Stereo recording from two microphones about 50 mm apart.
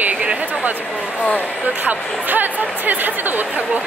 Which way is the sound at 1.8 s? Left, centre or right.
Right.